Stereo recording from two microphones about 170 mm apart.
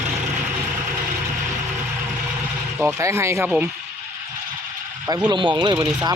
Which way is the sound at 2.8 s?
15° right (ahead or behind).